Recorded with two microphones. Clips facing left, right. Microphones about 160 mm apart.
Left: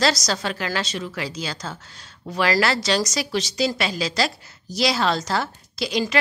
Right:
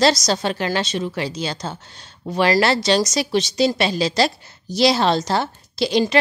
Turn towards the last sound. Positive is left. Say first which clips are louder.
# right 6 dB
turn(degrees=-30)  # may be behind; listen again after turning